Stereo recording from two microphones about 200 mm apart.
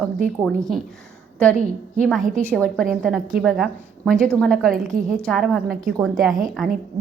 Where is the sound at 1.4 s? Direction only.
5° left (ahead or behind).